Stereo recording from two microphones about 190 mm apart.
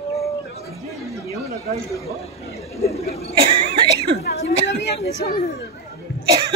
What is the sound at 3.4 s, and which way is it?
Speech, 25° right (ahead or behind).